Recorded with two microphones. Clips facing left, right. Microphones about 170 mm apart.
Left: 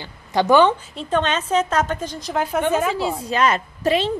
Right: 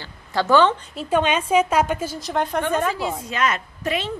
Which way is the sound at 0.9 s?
5° right (ahead or behind).